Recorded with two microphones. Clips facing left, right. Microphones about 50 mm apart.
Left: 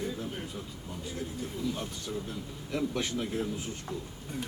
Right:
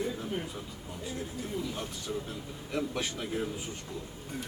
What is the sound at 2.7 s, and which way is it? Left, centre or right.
Speech, centre.